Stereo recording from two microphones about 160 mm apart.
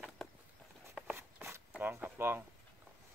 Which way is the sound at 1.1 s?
15° right (ahead or behind).